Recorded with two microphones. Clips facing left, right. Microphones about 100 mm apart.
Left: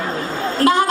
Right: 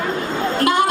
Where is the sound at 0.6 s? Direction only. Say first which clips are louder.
Left 3 dB; 40° left (ahead or behind).